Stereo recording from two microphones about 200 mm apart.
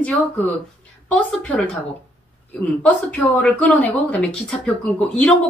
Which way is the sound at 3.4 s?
5° left (ahead or behind).